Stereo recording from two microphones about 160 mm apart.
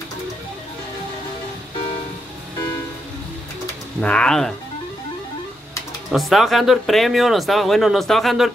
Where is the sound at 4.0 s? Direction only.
5° left (ahead or behind).